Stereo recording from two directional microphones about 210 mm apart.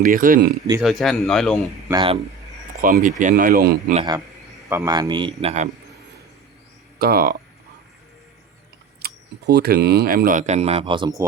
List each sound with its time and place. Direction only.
0.0 s speech: 40° right (ahead or behind)
0.8 s speech: centre (ahead or behind)
1.9 s a man's voice: 20° right (ahead or behind)
2.8 s speech: 40° right (ahead or behind)
3.9 s a man's voice: 20° right (ahead or behind)
7.0 s speech: 45° right (ahead or behind)
9.0 s speech: 50° right (ahead or behind); by 11.3 s 20° right (ahead or behind)